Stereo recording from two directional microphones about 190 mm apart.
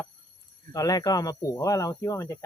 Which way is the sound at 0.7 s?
20° left (ahead or behind).